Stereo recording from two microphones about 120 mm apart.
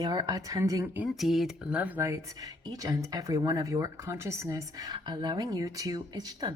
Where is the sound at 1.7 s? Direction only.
10° right (ahead or behind).